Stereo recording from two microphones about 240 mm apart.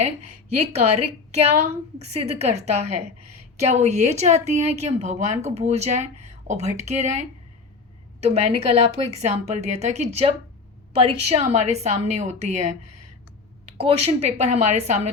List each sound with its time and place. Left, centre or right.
0.6 s a woman's voice: right
13.7 s a woman's voice: right